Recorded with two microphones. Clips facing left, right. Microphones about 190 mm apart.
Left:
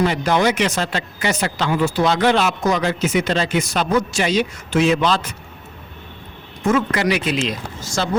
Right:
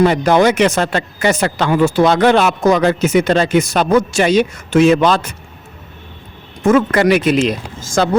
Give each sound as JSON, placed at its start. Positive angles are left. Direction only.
{"t": 0.0, "sound": "speech", "side_deg": -50}
{"t": 6.6, "sound": "speech", "side_deg": -50}